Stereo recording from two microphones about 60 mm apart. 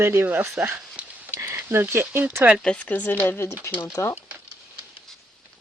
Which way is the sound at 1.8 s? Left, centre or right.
Right.